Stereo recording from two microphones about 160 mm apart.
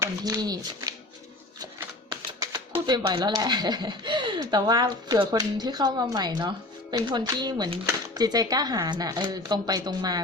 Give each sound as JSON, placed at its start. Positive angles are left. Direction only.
{"t": 0.0, "sound": "speech", "side_deg": -25}
{"t": 2.4, "sound": "shuffling cards", "side_deg": -15}
{"t": 2.8, "sound": "speech", "side_deg": -25}